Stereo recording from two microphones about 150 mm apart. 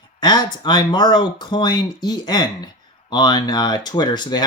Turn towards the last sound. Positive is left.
turn(degrees=30)  # may be behind; listen again after turning